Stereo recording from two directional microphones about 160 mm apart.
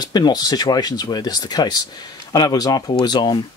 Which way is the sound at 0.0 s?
25° left (ahead or behind).